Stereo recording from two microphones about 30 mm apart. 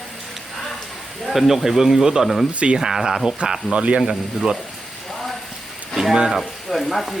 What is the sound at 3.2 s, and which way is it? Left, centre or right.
Speech, right.